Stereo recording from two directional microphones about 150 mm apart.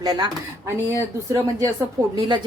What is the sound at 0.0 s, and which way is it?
Speech, 25° right (ahead or behind).